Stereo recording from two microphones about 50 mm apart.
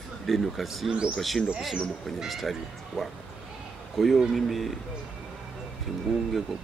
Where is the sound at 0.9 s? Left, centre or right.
Centre.